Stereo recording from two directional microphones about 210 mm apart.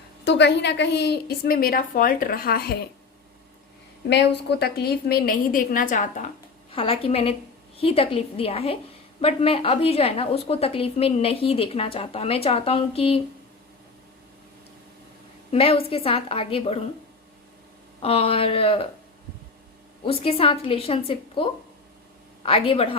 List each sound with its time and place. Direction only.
0.3 s a woman's voice: 55° left (ahead or behind)
4.1 s a woman's voice: 55° left (ahead or behind); by 13.1 s 25° left (ahead or behind)
15.5 s a woman's voice: 25° left (ahead or behind)
18.0 s a woman's voice: 25° left (ahead or behind)
20.1 s a woman's voice: 25° left (ahead or behind)